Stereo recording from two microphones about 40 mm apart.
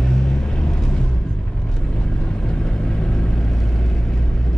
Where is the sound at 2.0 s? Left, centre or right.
Centre.